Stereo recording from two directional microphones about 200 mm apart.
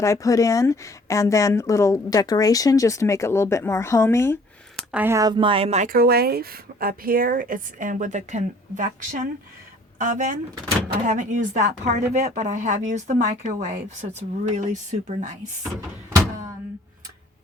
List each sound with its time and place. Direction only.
0.0 s speech: 15° left (ahead or behind)
4.9 s speech: 10° right (ahead or behind); by 15.3 s 35° right (ahead or behind)